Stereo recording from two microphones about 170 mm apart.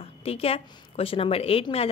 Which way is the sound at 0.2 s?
35° left (ahead or behind).